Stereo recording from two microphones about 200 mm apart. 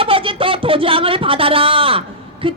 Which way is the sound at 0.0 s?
25° right (ahead or behind).